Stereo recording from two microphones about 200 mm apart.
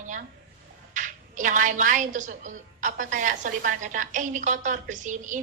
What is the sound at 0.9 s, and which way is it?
A woman's voice, 40° right (ahead or behind).